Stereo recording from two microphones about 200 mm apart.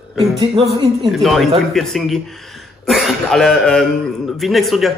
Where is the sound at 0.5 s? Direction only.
25° right (ahead or behind).